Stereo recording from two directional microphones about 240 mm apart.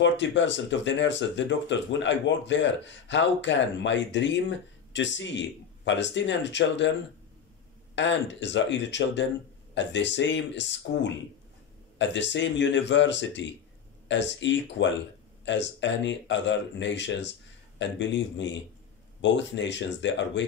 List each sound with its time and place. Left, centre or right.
0.0 s speech: left
7.9 s speech: left